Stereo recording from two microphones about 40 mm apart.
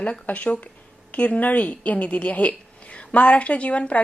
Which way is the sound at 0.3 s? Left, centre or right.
Left.